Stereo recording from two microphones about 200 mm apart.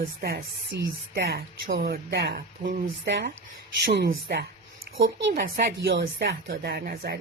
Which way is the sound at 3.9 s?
55° right (ahead or behind).